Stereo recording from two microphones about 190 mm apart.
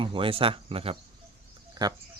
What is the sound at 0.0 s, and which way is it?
A man's voice, 25° right (ahead or behind).